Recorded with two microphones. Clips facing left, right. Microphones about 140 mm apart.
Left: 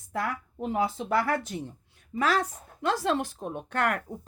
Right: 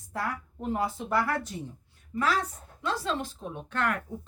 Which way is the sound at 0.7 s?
90° left.